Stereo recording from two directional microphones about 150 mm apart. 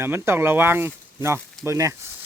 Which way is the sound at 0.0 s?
15° right (ahead or behind).